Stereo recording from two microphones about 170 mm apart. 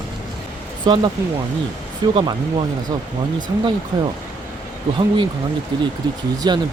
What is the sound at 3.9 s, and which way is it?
Speech, 25° right (ahead or behind).